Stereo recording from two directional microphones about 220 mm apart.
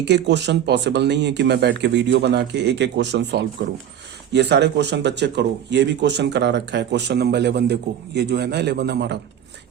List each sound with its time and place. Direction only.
0.0 s speech: 50° right (ahead or behind)